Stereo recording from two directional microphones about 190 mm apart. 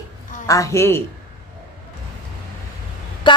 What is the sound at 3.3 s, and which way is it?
Speech, 25° left (ahead or behind).